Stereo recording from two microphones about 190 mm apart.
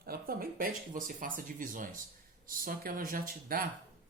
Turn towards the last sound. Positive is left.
turn(degrees=-50)  # may be behind; listen again after turning